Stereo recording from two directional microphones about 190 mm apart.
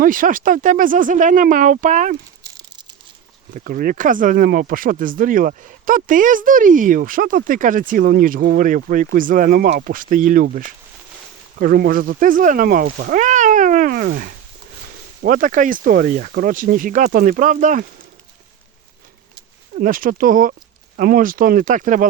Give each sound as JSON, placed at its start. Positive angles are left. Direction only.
{"t": 0.0, "sound": "speech", "side_deg": -45}
{"t": 3.5, "sound": "speech", "side_deg": -45}
{"t": 11.6, "sound": "speech", "side_deg": -50}
{"t": 19.7, "sound": "speech", "side_deg": -45}